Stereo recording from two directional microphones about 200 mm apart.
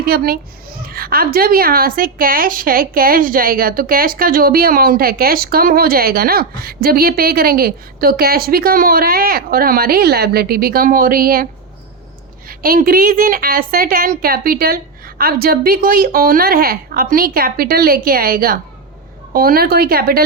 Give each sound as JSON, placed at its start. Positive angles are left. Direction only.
{"t": 0.0, "sound": "a woman's voice", "side_deg": -50}
{"t": 12.5, "sound": "a woman's voice", "side_deg": -45}